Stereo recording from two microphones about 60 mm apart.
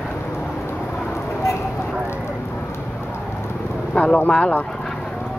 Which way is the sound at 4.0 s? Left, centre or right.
Centre.